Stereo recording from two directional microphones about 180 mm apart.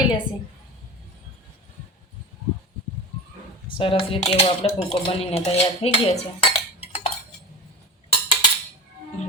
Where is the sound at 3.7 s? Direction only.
30° left (ahead or behind).